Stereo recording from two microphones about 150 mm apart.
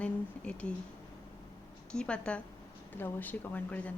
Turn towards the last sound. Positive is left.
turn(degrees=10)  # may be behind; listen again after turning